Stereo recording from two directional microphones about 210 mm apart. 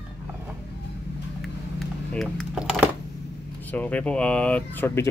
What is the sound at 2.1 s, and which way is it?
Speech, centre (ahead or behind).